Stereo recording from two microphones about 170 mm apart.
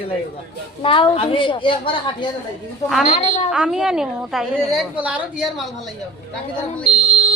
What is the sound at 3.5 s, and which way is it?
A woman's voice, 5° right (ahead or behind).